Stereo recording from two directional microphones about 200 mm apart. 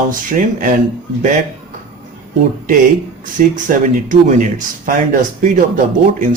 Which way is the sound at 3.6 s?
40° right (ahead or behind).